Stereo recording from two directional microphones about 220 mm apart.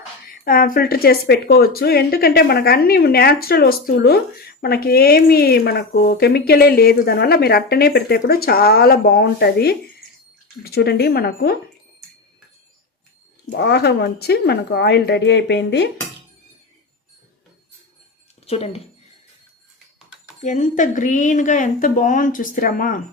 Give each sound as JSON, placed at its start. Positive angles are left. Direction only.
{"t": 0.3, "sound": "speech", "side_deg": 40}
{"t": 13.5, "sound": "speech", "side_deg": 50}
{"t": 18.4, "sound": "speech", "side_deg": 25}
{"t": 20.4, "sound": "speech", "side_deg": 35}